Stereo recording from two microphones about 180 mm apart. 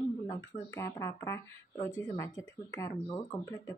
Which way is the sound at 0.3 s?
20° left (ahead or behind).